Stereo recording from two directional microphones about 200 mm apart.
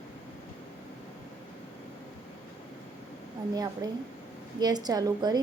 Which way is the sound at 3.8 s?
20° right (ahead or behind).